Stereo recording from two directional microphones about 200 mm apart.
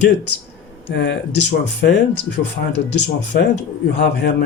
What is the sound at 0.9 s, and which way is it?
A man's voice, 60° left (ahead or behind).